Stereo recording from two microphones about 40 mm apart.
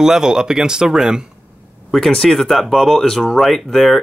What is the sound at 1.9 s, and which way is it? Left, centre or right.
Speech, centre.